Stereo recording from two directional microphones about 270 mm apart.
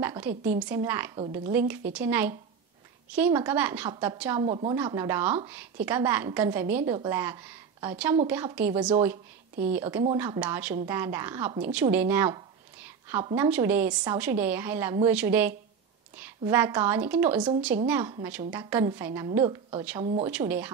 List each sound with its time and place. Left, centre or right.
0.0 s a woman's voice: centre